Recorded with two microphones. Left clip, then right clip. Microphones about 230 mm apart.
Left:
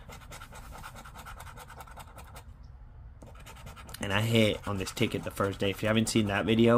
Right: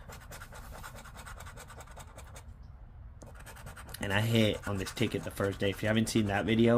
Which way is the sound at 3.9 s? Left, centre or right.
Centre.